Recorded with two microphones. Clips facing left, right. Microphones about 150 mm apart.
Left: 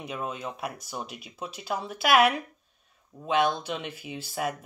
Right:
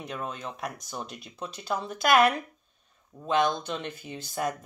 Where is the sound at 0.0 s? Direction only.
5° left (ahead or behind).